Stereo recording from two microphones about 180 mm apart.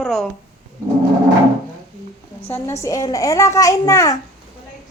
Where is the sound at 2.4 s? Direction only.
15° left (ahead or behind).